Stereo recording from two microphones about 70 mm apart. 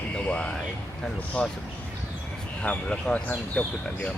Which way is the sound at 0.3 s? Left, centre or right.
Centre.